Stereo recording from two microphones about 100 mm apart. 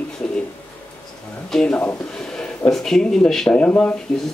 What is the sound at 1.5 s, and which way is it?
Speech, 5° left (ahead or behind).